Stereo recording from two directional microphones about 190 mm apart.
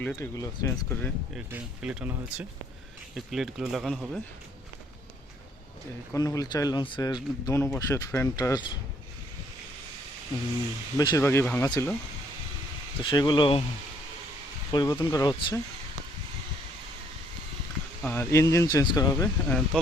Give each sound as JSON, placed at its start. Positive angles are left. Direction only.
{"t": 0.2, "sound": "speech", "side_deg": 15}
{"t": 1.5, "sound": "speech", "side_deg": -5}
{"t": 6.1, "sound": "speech", "side_deg": 20}
{"t": 10.9, "sound": "speech", "side_deg": 20}
{"t": 13.0, "sound": "speech", "side_deg": 25}
{"t": 14.7, "sound": "speech", "side_deg": 20}
{"t": 18.0, "sound": "speech", "side_deg": 10}
{"t": 19.5, "sound": "speech", "side_deg": 0}